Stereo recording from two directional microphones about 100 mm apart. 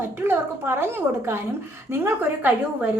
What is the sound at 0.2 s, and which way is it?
A woman's voice, 25° right (ahead or behind).